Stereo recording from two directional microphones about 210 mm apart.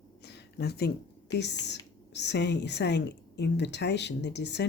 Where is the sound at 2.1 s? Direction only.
55° left (ahead or behind).